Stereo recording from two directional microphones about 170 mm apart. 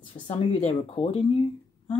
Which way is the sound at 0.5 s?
35° left (ahead or behind).